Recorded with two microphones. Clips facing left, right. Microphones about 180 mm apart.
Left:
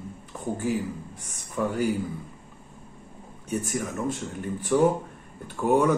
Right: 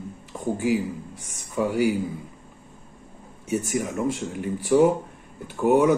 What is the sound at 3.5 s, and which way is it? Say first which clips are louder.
Speech: right 4 dB; 10° right (ahead or behind).